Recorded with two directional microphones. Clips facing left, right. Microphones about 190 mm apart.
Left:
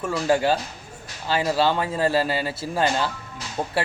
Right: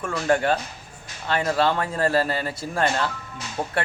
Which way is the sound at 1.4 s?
Centre (ahead or behind).